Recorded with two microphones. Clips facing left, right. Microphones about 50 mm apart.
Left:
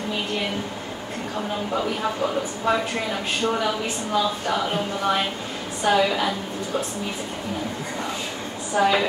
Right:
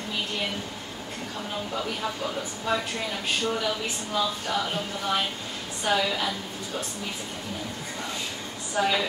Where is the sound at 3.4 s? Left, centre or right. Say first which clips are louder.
Left 7 dB; left.